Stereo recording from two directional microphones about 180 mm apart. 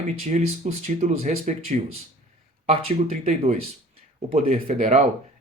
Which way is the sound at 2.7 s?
35° right (ahead or behind).